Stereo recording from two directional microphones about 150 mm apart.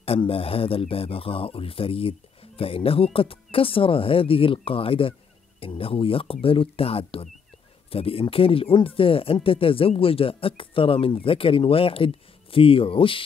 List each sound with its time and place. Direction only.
0.0 s speech: 40° left (ahead or behind)